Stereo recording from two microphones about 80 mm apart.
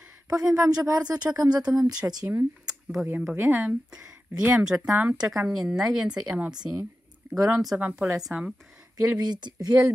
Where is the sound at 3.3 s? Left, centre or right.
Right.